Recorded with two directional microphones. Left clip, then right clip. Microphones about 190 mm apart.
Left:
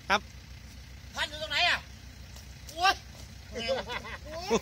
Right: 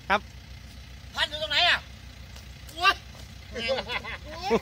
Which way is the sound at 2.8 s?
10° right (ahead or behind).